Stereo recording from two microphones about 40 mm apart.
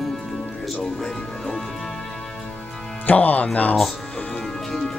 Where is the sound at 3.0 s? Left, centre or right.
Left.